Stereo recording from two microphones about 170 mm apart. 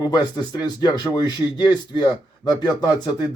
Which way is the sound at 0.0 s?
25° left (ahead or behind).